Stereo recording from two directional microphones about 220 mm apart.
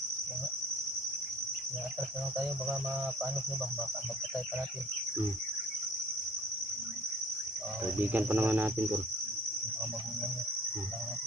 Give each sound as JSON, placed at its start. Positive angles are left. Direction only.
{"t": 7.9, "sound": "cricket", "side_deg": -10}